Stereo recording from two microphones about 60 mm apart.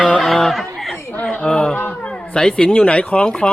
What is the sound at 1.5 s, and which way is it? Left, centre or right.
Speech, centre.